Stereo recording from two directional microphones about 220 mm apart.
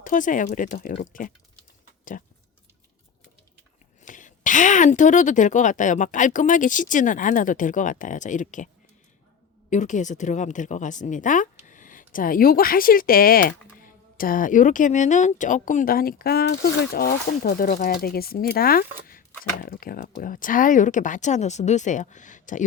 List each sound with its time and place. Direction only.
0.0 s speech: 35° left (ahead or behind)
4.0 s speech: 35° left (ahead or behind)